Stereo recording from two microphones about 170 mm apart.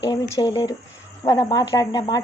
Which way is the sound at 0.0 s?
25° left (ahead or behind).